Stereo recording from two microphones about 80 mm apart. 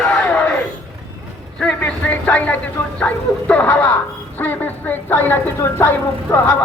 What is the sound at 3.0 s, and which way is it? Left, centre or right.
Speech, centre.